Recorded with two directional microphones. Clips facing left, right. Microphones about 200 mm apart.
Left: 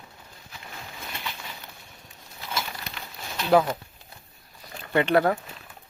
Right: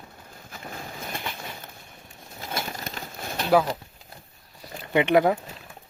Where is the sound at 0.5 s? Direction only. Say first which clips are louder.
Right 5 dB; 50° right (ahead or behind).